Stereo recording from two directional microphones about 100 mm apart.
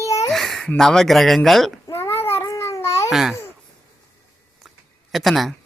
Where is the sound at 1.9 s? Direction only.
25° left (ahead or behind).